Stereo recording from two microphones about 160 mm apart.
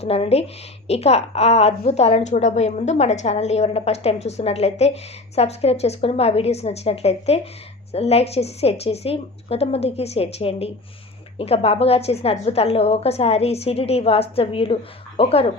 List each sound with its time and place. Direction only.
0.0 s a woman's voice: 40° left (ahead or behind)